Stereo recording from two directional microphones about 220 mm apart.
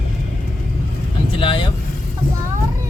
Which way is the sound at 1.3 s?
20° left (ahead or behind).